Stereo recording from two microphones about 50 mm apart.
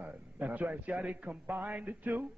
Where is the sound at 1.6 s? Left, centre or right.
Right.